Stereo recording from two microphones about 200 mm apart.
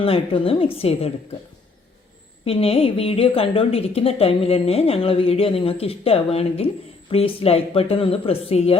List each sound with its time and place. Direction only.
0.0 s a woman's voice: 25° left (ahead or behind)
2.4 s a woman's voice: 30° left (ahead or behind)